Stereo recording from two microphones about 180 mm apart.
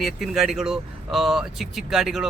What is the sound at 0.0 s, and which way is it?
Speech, centre (ahead or behind).